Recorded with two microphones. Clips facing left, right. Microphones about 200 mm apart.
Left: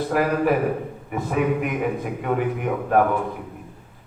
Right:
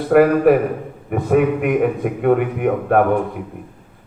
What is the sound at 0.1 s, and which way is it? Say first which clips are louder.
A man's voice: right 10 dB; 55° right (ahead or behind).